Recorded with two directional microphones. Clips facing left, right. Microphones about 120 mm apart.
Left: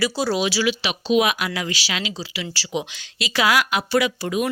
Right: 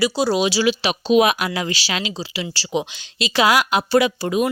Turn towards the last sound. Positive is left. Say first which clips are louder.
# right 3 dB
turn(degrees=-30)  # may be behind; listen again after turning